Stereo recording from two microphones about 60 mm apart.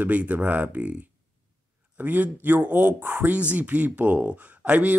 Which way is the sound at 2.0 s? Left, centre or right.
Right.